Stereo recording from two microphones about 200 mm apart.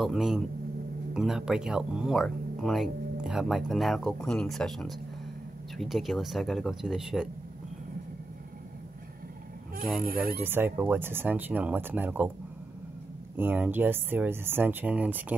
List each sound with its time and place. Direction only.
0.0 s speech: centre (ahead or behind)
9.9 s speech: 45° right (ahead or behind)
10.3 s speech: 10° right (ahead or behind)
13.4 s speech: 10° right (ahead or behind)